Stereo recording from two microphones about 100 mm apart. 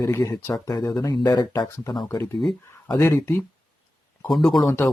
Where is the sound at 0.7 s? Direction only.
45° left (ahead or behind).